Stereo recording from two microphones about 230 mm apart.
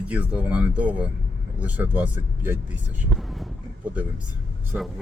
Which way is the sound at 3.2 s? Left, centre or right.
Centre.